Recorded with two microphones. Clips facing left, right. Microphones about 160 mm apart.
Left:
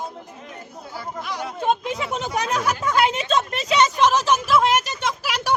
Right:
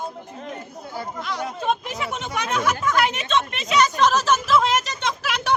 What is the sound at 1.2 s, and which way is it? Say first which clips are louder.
Chatter: left 2 dB; 15° left (ahead or behind).